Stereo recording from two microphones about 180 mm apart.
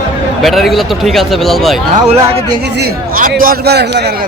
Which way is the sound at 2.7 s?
55° right (ahead or behind).